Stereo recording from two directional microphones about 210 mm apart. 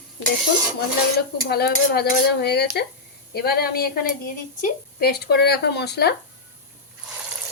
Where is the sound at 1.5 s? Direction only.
50° left (ahead or behind).